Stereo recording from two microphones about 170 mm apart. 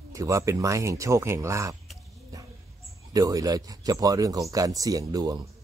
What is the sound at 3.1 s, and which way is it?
Speech, 20° right (ahead or behind).